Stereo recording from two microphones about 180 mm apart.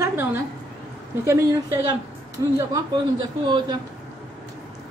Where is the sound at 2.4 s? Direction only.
20° right (ahead or behind).